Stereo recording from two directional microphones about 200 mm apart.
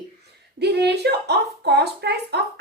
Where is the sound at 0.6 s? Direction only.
55° right (ahead or behind).